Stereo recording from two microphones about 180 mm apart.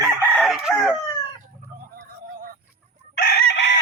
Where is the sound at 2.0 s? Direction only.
55° right (ahead or behind).